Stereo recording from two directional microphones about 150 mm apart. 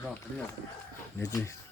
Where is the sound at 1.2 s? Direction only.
25° left (ahead or behind).